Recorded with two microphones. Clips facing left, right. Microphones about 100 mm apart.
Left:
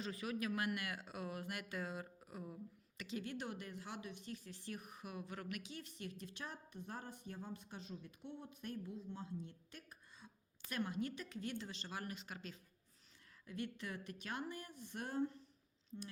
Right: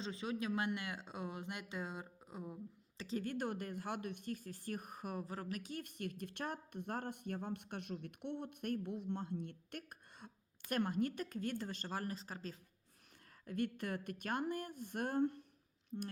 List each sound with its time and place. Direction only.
0.0 s speech: 25° right (ahead or behind)
3.0 s speech: 40° right (ahead or behind)
5.7 s a woman's voice: 55° right (ahead or behind); by 12.5 s 35° right (ahead or behind)
13.4 s speech: 50° right (ahead or behind)
15.9 s speech: 30° right (ahead or behind)